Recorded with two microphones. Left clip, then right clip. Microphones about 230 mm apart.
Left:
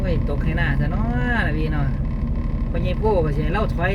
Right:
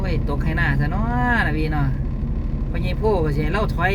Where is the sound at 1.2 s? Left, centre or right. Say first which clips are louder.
Right 3 dB; right.